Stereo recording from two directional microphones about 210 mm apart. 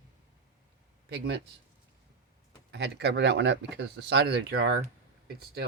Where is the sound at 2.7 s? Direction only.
55° right (ahead or behind).